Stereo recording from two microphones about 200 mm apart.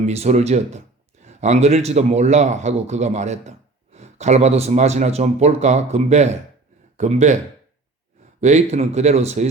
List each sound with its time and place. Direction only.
0.0 s speech: 30° right (ahead or behind)
8.4 s speech: 35° right (ahead or behind)